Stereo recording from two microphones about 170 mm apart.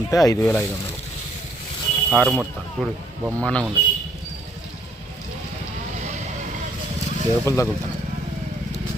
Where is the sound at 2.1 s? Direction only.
Centre (ahead or behind).